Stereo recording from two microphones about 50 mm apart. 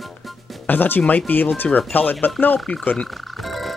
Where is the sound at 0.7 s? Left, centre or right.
Left.